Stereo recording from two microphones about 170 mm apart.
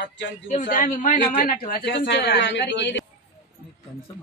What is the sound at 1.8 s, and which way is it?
Speech, 90° left.